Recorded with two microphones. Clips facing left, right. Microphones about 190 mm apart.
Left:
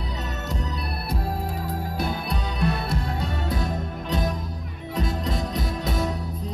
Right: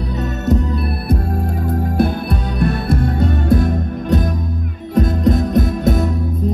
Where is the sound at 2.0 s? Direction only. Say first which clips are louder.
Right 11 dB; 50° right (ahead or behind).